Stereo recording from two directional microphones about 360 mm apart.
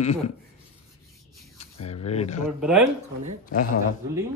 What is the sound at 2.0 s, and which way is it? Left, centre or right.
Speech, centre.